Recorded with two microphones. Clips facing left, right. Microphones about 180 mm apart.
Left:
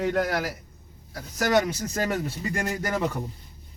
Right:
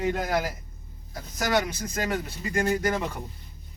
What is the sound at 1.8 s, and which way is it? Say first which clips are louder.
Speech: left 2 dB; 40° left (ahead or behind).